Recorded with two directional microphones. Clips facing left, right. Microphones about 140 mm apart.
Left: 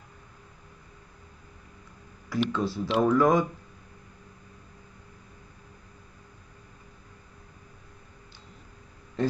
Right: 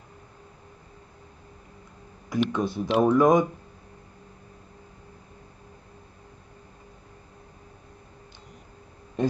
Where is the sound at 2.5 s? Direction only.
20° right (ahead or behind).